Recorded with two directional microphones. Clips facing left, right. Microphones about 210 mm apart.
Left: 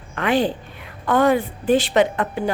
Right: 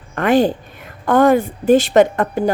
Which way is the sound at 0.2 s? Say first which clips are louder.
Right 5 dB; 45° right (ahead or behind).